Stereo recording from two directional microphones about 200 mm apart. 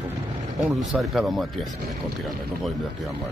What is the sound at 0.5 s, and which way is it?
Speech, centre (ahead or behind).